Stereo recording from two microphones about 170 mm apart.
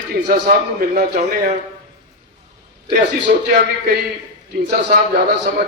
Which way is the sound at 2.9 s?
65° right (ahead or behind).